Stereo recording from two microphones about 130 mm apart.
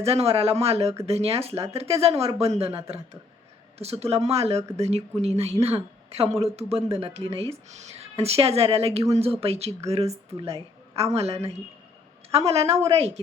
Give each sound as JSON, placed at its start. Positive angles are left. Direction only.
{"t": 0.0, "sound": "a woman's voice", "side_deg": -50}